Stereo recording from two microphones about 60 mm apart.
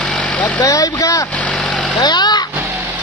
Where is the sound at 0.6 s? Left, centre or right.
Left.